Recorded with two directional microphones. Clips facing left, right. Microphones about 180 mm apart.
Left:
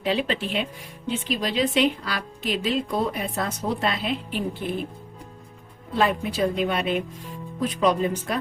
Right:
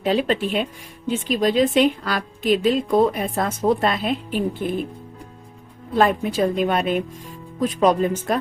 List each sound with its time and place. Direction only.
0.0 s speech: 45° right (ahead or behind)
6.0 s speech: 45° right (ahead or behind)